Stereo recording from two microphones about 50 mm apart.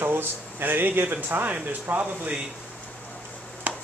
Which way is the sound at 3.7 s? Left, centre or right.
Right.